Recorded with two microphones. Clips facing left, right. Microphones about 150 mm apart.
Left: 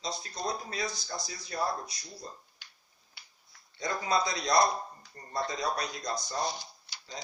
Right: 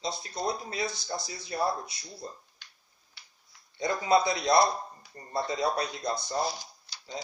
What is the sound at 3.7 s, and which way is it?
A man's voice, 25° right (ahead or behind).